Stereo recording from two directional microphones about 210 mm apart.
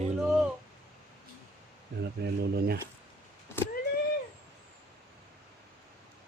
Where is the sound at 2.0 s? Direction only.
50° right (ahead or behind).